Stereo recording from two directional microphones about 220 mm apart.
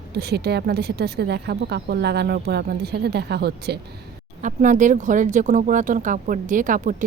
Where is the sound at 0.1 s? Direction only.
45° right (ahead or behind).